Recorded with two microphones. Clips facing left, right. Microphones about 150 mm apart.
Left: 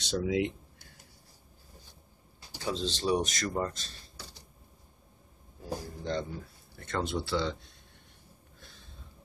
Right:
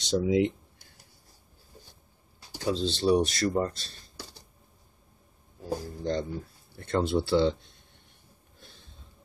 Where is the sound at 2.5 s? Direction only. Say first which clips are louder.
Right 5 dB; 40° right (ahead or behind).